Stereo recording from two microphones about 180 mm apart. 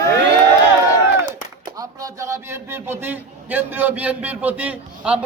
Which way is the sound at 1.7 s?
20° right (ahead or behind).